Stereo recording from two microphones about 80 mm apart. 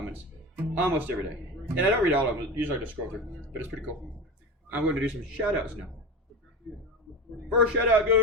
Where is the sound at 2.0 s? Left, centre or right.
Right.